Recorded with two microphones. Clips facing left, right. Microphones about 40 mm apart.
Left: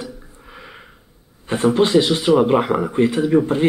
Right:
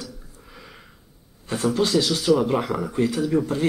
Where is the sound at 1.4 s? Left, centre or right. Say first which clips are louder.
Left 6 dB; left.